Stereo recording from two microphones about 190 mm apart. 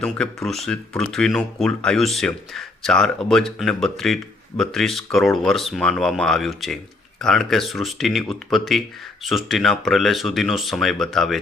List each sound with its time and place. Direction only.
0.0 s speech: 5° left (ahead or behind)